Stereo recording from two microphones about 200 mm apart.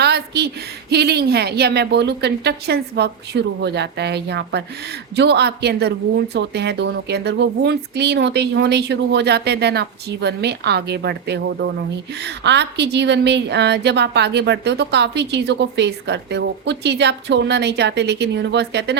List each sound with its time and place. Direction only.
0.0 s a woman's voice: 55° right (ahead or behind)